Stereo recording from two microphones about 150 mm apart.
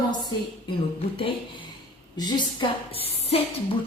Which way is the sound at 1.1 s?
35° left (ahead or behind).